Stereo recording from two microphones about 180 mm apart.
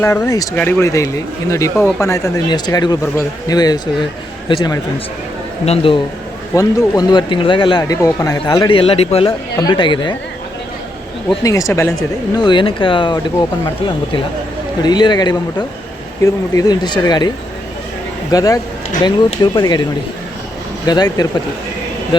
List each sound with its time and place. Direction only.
0.0 s a man's voice: 20° left (ahead or behind)
6.5 s speech: 20° left (ahead or behind)
11.4 s speech: 15° left (ahead or behind)
12.4 s speech: 25° left (ahead or behind)
14.8 s speech: 25° left (ahead or behind)